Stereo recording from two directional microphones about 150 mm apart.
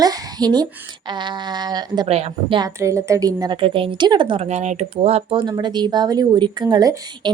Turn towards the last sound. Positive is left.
turn(degrees=-30)  # may be behind; listen again after turning